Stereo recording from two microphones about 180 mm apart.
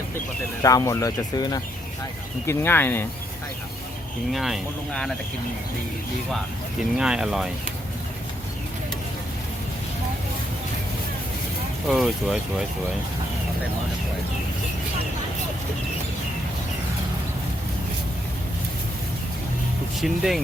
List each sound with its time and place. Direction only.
0.6 s speech: 20° left (ahead or behind)
4.3 s speech: centre (ahead or behind)
6.9 s speech: 5° right (ahead or behind)
11.9 s speech: centre (ahead or behind)
20.0 s speech: centre (ahead or behind)